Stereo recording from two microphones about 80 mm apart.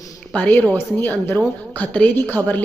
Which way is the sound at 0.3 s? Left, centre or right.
Centre.